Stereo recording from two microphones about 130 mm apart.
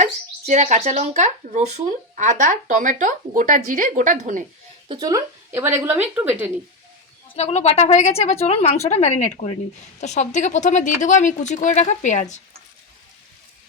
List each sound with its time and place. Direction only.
0.0 s speech: 60° right (ahead or behind)
4.9 s speech: 30° right (ahead or behind)
5.5 s speech: 20° right (ahead or behind)
7.3 s speech: 55° left (ahead or behind)